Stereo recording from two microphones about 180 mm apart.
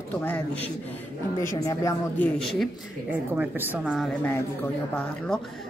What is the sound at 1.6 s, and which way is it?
Speech, 20° left (ahead or behind).